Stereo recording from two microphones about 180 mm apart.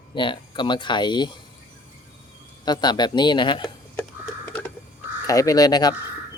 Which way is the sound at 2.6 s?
25° left (ahead or behind).